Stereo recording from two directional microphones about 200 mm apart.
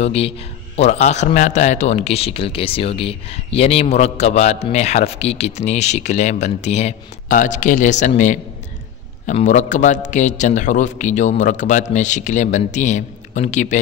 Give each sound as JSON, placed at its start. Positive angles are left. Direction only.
{"t": 0.0, "sound": "a man's voice", "side_deg": 30}